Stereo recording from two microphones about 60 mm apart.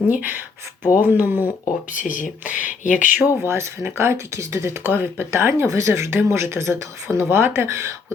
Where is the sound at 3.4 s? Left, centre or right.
Right.